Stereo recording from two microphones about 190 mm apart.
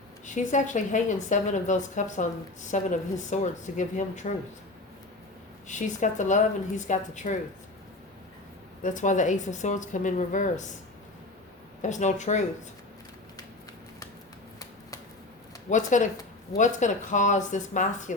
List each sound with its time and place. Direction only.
0.3 s a woman's voice: 40° left (ahead or behind)
5.6 s a woman's voice: 40° left (ahead or behind)
8.8 s a woman's voice: 40° left (ahead or behind)
11.8 s a woman's voice: 40° left (ahead or behind)
15.7 s a woman's voice: 40° left (ahead or behind)